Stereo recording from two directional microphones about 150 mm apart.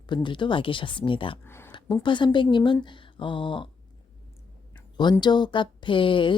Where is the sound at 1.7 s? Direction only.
30° left (ahead or behind).